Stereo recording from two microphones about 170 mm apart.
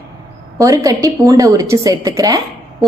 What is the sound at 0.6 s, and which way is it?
A woman's voice, 20° right (ahead or behind).